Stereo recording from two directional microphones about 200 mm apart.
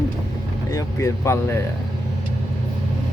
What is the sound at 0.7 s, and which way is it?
Speech, 15° left (ahead or behind).